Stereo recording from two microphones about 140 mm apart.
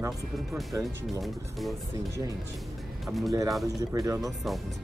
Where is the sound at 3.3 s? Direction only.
25° right (ahead or behind).